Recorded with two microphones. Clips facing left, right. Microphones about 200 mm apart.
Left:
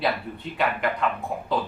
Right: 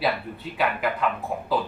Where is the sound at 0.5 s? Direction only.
5° right (ahead or behind).